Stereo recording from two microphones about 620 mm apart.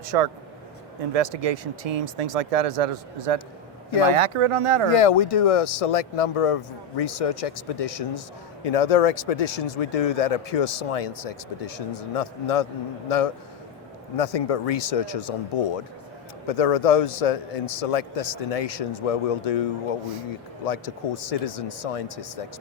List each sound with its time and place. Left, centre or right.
0.0 s speech: right
4.9 s speech: left
16.5 s speech: left
20.7 s speech: left